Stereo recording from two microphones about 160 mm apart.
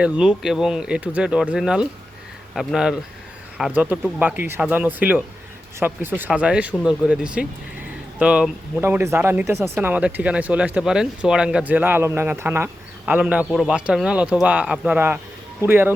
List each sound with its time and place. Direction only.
0.0 s speech: 5° right (ahead or behind)